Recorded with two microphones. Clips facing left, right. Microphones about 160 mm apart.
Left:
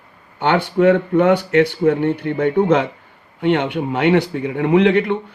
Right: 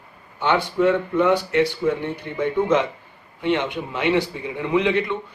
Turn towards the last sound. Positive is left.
turn(degrees=55)  # may be behind; listen again after turning